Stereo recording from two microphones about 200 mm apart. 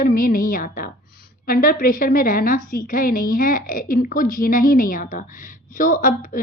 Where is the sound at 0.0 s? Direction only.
45° left (ahead or behind).